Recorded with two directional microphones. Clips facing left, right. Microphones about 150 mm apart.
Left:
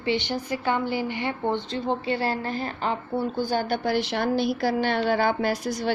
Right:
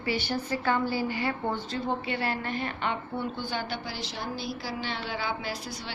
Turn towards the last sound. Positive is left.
turn(degrees=45)  # may be behind; listen again after turning